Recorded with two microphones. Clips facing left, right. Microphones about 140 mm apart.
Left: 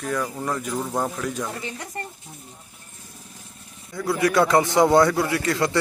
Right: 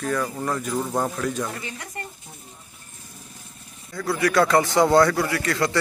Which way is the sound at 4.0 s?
20° left (ahead or behind).